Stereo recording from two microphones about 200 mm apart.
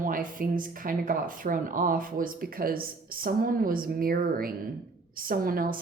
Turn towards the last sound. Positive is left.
turn(degrees=-45)  # may be behind; listen again after turning